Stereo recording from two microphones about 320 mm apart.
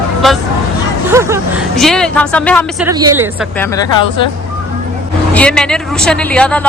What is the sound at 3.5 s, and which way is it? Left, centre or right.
Speech, centre.